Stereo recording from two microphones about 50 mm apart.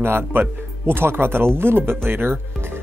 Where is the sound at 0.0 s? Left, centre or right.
Right.